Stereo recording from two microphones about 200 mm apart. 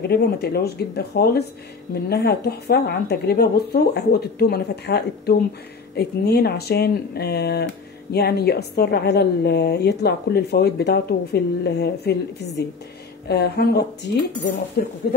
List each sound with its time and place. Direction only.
0.1 s speech: 50° left (ahead or behind)
13.3 s cutlery: 55° left (ahead or behind)
14.8 s speech: 45° left (ahead or behind)